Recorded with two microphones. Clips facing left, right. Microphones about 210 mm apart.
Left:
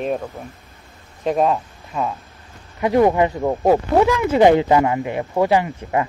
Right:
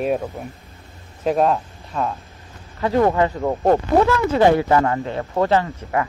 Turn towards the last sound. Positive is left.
turn(degrees=15)  # may be behind; listen again after turning